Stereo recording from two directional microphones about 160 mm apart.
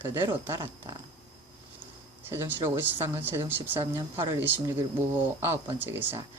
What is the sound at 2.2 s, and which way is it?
Speech, 15° right (ahead or behind).